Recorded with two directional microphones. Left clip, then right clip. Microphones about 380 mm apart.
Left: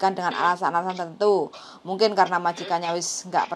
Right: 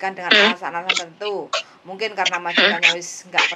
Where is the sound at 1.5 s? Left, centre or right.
Right.